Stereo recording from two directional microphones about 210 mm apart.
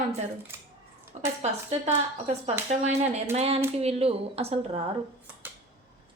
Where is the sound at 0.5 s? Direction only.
10° right (ahead or behind).